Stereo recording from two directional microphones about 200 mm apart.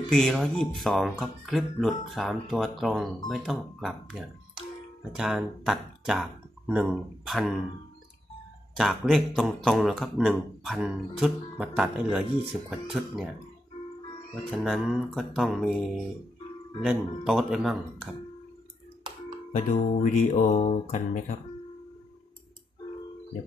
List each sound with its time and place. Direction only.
0.1 s a man's voice: 5° left (ahead or behind)
8.7 s a man's voice: centre (ahead or behind)
14.5 s a man's voice: centre (ahead or behind)
16.8 s a man's voice: centre (ahead or behind)
19.5 s mantra: 40° left (ahead or behind)